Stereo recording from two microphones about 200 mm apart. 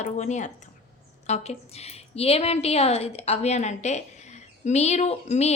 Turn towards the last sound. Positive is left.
turn(degrees=35)  # may be behind; listen again after turning